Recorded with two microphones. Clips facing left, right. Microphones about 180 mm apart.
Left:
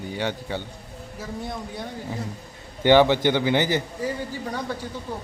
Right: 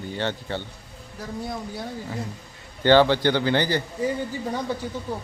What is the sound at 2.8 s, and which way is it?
Speech, 15° left (ahead or behind).